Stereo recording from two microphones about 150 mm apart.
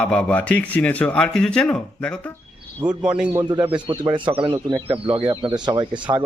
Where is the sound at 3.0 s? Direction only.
5° right (ahead or behind).